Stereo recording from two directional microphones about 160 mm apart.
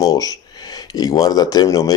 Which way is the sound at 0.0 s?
20° left (ahead or behind).